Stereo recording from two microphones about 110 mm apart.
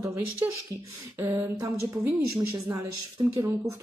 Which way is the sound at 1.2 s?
25° right (ahead or behind).